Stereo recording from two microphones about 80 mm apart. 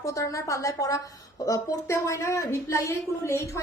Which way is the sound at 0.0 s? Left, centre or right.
Left.